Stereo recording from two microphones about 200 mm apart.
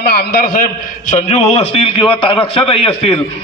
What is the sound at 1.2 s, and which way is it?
A man's voice, 35° left (ahead or behind).